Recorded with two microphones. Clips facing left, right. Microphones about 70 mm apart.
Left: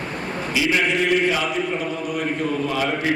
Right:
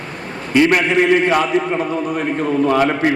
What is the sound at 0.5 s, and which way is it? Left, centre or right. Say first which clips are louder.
Speech: right 8 dB; right.